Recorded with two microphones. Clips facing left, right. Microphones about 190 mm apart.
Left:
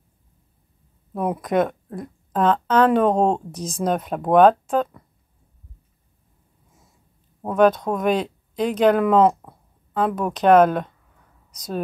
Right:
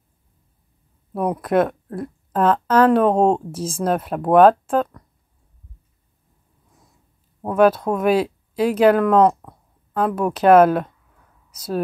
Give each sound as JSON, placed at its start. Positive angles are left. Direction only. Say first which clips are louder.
{"t": 1.1, "sound": "speech", "louder": "right 2 dB", "side_deg": 0}
{"t": 7.4, "sound": "speech", "louder": "right 1 dB", "side_deg": -5}